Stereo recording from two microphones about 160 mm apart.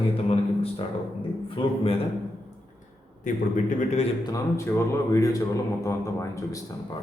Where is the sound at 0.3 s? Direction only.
40° left (ahead or behind).